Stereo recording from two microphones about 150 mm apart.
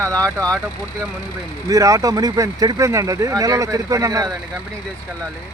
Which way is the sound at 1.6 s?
25° right (ahead or behind).